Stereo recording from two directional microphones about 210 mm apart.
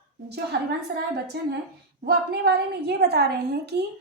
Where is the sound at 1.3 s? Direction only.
50° right (ahead or behind).